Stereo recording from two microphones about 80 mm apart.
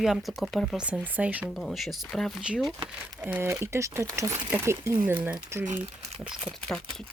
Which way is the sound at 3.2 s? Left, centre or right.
Right.